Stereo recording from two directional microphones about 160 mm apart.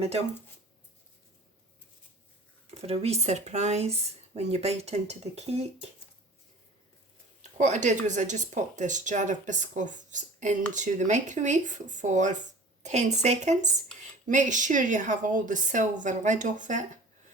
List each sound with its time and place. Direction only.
2.6 s speech: 40° right (ahead or behind)
7.6 s speech: 50° right (ahead or behind)